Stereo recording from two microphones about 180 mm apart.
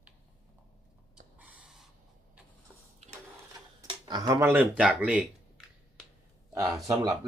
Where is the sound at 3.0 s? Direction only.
40° right (ahead or behind).